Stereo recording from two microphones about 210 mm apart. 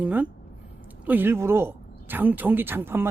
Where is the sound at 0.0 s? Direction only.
5° right (ahead or behind).